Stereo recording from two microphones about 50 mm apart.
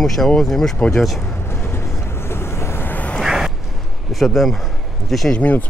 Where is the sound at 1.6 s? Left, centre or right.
Left.